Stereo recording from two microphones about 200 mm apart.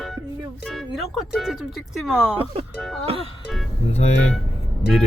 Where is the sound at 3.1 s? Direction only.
30° right (ahead or behind).